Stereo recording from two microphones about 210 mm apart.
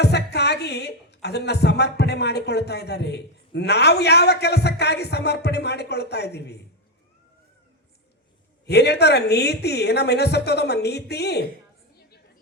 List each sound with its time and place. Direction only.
0.0 s speech: 50° left (ahead or behind)
8.6 s speech: 50° left (ahead or behind)